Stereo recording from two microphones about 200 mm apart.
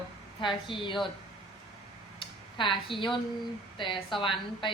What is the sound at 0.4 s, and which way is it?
Speech, 25° left (ahead or behind).